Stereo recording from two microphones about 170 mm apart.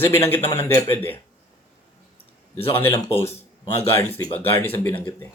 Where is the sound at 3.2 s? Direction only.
40° left (ahead or behind).